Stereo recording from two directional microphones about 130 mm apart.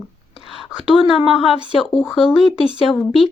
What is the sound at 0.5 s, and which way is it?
A woman's voice, 5° right (ahead or behind).